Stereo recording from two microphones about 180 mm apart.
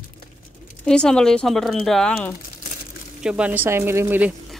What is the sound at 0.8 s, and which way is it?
Speech, 5° left (ahead or behind).